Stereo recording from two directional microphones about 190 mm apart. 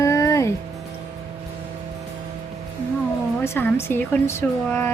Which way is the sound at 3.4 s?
10° left (ahead or behind).